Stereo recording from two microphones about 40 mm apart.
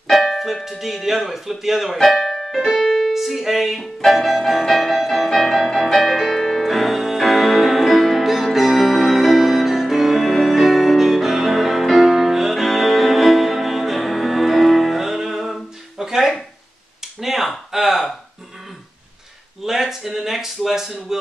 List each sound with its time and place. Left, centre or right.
0.1 s music: centre
0.7 s speech: centre
2.0 s piano: centre
2.9 s music: centre
16.0 s a sound: centre
17.2 s finger snapping: centre
17.6 s a sound: centre
19.6 s a man's voice: centre